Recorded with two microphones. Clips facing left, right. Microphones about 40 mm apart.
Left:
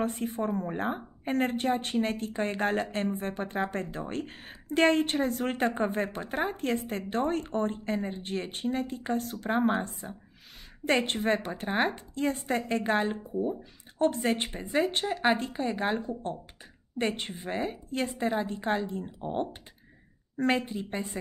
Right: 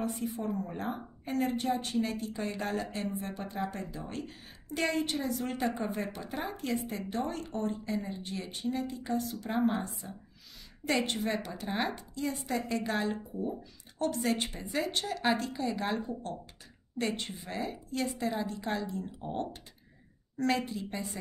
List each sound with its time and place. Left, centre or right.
0.0 s a woman's voice: left
17.2 s speech: left